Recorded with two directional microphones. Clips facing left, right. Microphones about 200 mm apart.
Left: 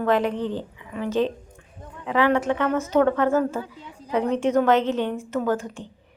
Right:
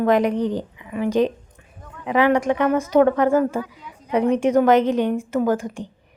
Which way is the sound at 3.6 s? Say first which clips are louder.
Right 1 dB; 30° left (ahead or behind).